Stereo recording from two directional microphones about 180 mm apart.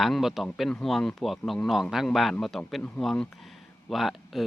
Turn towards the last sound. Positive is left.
turn(degrees=0)  # may be behind; listen again after turning